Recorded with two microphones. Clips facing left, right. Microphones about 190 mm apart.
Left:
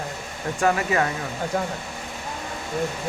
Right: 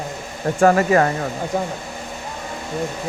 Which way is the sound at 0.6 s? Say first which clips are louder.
Right 7 dB; 45° right (ahead or behind).